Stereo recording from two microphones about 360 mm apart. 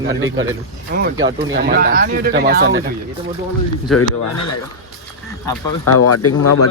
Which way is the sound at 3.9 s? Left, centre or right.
Centre.